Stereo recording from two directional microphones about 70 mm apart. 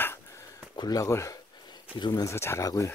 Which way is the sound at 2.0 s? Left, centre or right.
Left.